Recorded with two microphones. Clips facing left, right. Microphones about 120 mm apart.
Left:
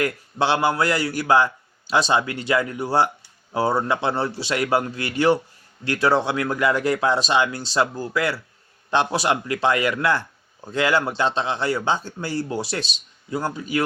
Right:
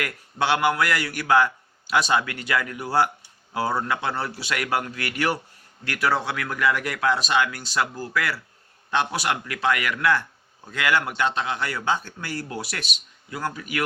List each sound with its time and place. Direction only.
0.0 s a man's voice: 30° left (ahead or behind)